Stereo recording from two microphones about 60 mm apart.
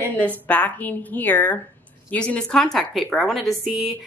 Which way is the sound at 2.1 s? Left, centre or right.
Centre.